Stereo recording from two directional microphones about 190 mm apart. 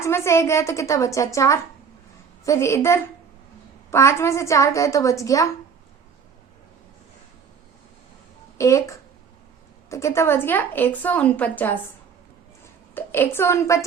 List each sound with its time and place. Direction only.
0.0 s a woman's voice: 15° left (ahead or behind)
8.5 s a woman's voice: 15° left (ahead or behind)
12.9 s a woman's voice: 10° left (ahead or behind)